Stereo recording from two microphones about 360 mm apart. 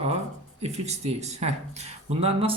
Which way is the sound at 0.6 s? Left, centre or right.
Centre.